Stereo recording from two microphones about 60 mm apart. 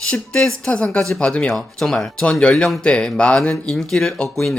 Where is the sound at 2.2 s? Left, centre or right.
Centre.